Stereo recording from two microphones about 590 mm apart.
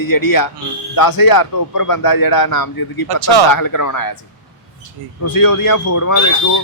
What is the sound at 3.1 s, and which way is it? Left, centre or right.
Speech, right.